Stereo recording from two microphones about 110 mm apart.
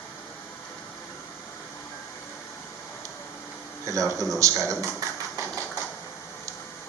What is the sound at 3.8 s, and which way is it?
Speech, 30° right (ahead or behind).